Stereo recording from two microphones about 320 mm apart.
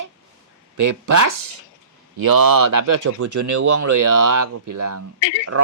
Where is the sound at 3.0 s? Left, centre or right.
Right.